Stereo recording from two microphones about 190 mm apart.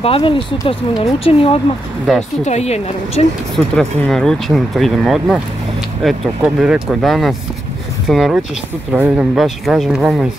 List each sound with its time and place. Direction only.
0.0 s a woman's voice: 30° left (ahead or behind)
3.5 s speech: centre (ahead or behind)